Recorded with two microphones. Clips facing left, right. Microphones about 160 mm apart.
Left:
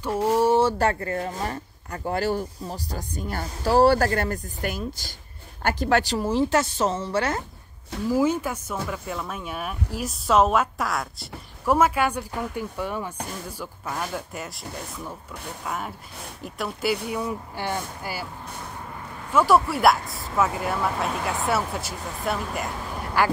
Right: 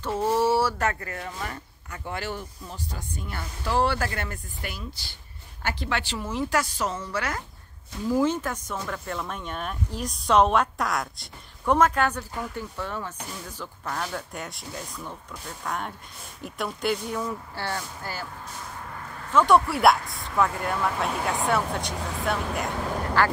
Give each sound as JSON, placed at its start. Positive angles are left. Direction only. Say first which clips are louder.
{"t": 0.0, "sound": "a woman's voice", "louder": "left 2 dB", "side_deg": 10}
{"t": 8.1, "sound": "speech", "louder": "left 1 dB", "side_deg": 10}
{"t": 19.3, "sound": "speech", "louder": "even", "side_deg": 5}